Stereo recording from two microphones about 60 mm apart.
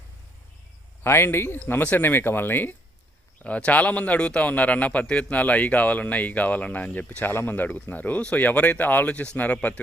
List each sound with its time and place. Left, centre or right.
1.0 s speech: left
1.6 s speech: left
3.4 s speech: left